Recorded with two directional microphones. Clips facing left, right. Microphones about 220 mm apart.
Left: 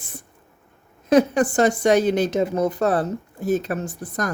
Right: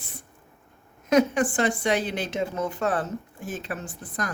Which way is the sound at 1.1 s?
35° left (ahead or behind).